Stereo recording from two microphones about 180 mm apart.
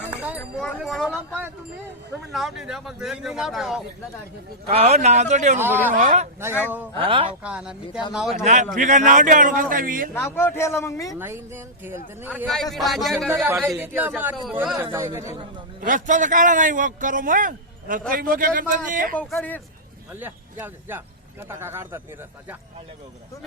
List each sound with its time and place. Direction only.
0.8 s speech: centre (ahead or behind)
4.7 s a man's voice: 35° right (ahead or behind)
5.5 s speech: 10° right (ahead or behind)
5.9 s a man's voice: 45° right (ahead or behind)
7.0 s speech: 30° right (ahead or behind)
7.4 s speech: 5° right (ahead or behind)
8.7 s a man's voice: 45° right (ahead or behind)
10.2 s a man's voice: 15° left (ahead or behind)
11.2 s speech: 10° right (ahead or behind)
12.7 s speech: centre (ahead or behind)
13.3 s speech: 10° right (ahead or behind)
15.8 s a man's voice: 45° right (ahead or behind)
19.1 s a man's voice: 5° left (ahead or behind)
20.1 s speech: 10° right (ahead or behind)